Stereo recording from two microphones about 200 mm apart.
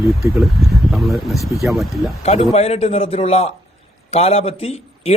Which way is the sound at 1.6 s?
Centre (ahead or behind).